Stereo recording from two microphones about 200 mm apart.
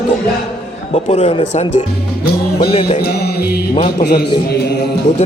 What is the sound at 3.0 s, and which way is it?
Music, 50° left (ahead or behind).